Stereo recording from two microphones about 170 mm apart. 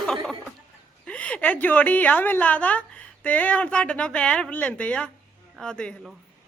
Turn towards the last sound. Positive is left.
turn(degrees=5)  # may be behind; listen again after turning